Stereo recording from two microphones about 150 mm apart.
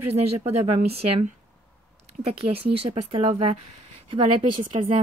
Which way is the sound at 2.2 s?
40° right (ahead or behind).